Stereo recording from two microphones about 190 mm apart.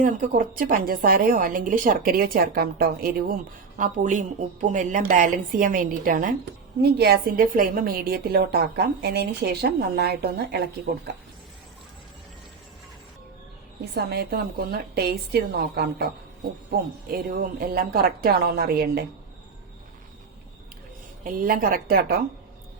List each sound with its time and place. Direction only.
0.0 s a woman's voice: 45° right (ahead or behind)
6.8 s a woman's voice: 55° right (ahead or behind)
13.9 s a woman's voice: 60° right (ahead or behind)
21.2 s a woman's voice: 45° right (ahead or behind)